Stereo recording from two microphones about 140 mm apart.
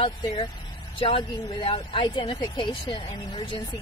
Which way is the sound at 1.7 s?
35° left (ahead or behind).